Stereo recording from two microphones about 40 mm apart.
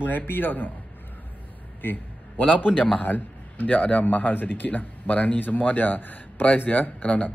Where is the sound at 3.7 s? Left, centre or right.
Left.